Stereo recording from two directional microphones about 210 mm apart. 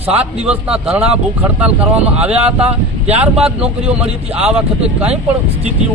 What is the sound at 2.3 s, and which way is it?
Speech, 30° right (ahead or behind).